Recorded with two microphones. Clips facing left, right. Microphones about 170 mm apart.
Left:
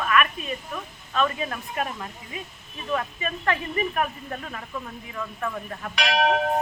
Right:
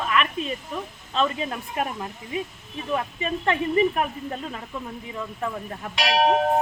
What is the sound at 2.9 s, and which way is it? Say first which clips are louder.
Speech: right 2 dB; 25° right (ahead or behind).